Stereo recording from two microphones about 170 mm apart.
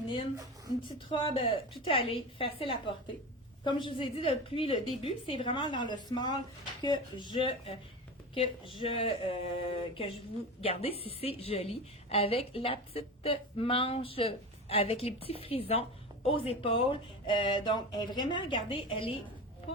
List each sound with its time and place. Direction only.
0.9 s a woman's voice: 30° left (ahead or behind)